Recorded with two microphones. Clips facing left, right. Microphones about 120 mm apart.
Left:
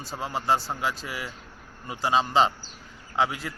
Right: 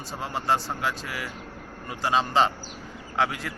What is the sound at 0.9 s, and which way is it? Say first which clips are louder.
Speech: right 1 dB; 25° left (ahead or behind).